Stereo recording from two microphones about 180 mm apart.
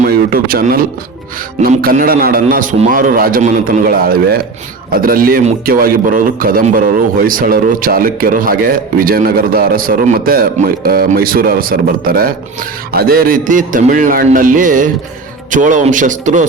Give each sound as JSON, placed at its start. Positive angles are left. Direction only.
{"t": 0.0, "sound": "a man's voice", "side_deg": -55}